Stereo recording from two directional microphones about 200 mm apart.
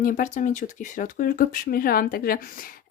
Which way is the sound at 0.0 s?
40° left (ahead or behind).